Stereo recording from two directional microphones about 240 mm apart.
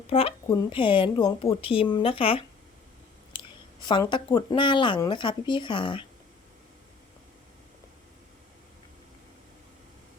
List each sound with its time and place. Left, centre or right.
0.1 s speech: left
3.3 s a sound: centre
4.4 s speech: centre